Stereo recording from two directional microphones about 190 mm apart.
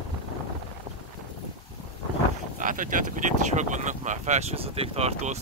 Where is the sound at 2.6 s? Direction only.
45° right (ahead or behind).